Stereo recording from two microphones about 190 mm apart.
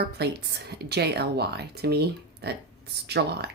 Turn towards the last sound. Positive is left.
turn(degrees=-60)  # may be behind; listen again after turning